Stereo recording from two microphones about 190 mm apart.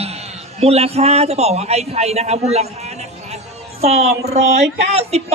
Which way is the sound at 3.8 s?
35° right (ahead or behind).